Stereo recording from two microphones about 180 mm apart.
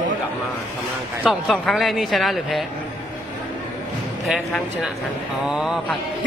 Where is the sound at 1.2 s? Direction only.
Centre (ahead or behind).